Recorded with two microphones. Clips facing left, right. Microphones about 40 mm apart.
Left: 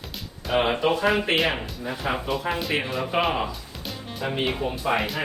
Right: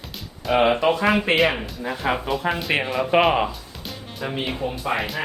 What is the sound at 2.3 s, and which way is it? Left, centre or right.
Speech, centre.